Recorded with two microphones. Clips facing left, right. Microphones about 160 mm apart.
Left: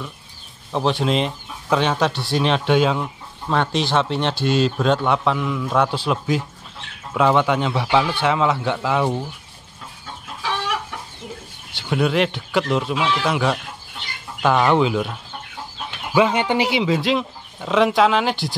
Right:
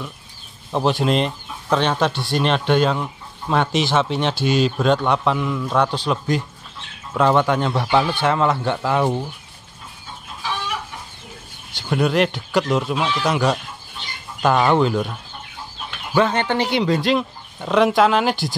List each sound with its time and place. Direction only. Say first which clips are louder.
0.7 s speech: right 1 dB; 5° right (ahead or behind)
10.4 s chicken: left 2 dB; 75° left (ahead or behind)
11.7 s speech: right 1 dB; centre (ahead or behind)
16.2 s speech: left 1 dB; 10° left (ahead or behind)